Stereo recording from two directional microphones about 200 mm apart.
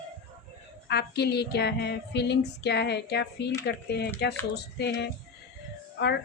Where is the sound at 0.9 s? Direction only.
55° left (ahead or behind).